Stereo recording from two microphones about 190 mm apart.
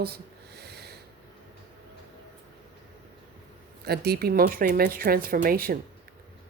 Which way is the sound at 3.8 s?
60° right (ahead or behind).